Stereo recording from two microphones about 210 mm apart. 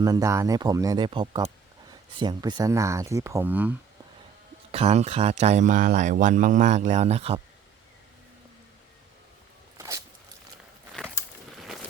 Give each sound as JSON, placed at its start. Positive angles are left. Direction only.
{"t": 0.0, "sound": "speech", "side_deg": -15}
{"t": 4.7, "sound": "speech", "side_deg": -30}
{"t": 9.7, "sound": "a sound", "side_deg": -15}